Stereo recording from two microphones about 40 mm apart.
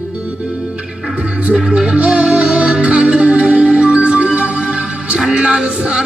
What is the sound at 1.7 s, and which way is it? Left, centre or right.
Music, right.